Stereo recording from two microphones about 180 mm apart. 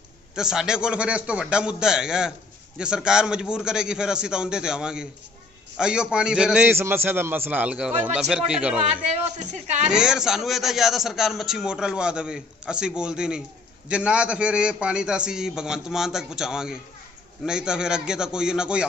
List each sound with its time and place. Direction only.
0.4 s a man's voice: 5° right (ahead or behind)
9.1 s speech: 40° right (ahead or behind)
9.8 s a man's voice: 5° right (ahead or behind)